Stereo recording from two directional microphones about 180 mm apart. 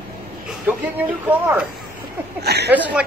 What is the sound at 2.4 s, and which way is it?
Speech, 65° right (ahead or behind).